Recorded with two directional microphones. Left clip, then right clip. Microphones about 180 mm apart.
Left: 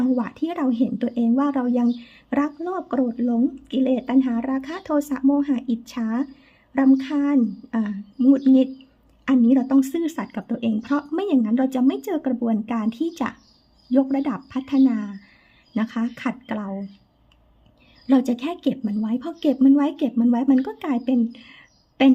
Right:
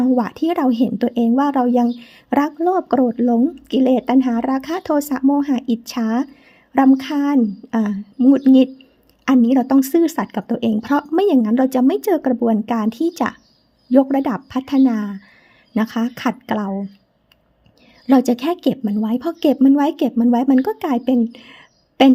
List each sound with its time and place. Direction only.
0.0 s a woman's voice: 40° right (ahead or behind)
18.0 s a woman's voice: 40° right (ahead or behind)